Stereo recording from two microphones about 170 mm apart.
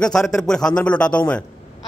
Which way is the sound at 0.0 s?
5° left (ahead or behind).